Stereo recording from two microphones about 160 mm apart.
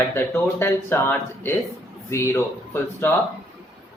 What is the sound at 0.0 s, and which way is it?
Speech, 15° left (ahead or behind).